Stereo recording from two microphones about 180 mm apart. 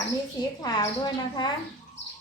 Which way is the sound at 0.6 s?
25° left (ahead or behind).